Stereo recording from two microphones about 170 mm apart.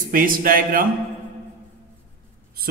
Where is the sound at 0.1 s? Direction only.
55° right (ahead or behind).